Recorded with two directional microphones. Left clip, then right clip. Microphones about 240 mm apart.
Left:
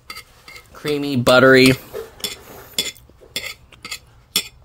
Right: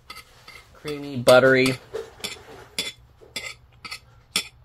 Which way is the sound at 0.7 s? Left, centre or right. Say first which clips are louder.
Left 11 dB; left.